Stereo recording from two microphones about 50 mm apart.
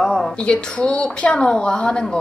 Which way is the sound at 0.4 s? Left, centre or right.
Left.